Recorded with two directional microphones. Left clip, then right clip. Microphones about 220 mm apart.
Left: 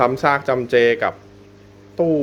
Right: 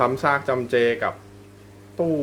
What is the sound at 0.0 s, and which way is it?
Speech, 15° left (ahead or behind).